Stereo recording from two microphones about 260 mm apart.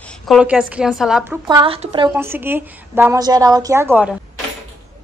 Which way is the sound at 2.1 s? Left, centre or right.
Centre.